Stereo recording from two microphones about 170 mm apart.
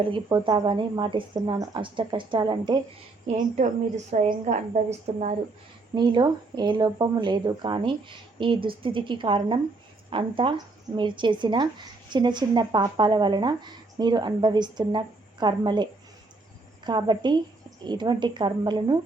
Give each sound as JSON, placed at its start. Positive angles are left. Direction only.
{"t": 0.0, "sound": "speech", "side_deg": -30}
{"t": 3.2, "sound": "a woman's voice", "side_deg": -45}
{"t": 5.9, "sound": "speech", "side_deg": -25}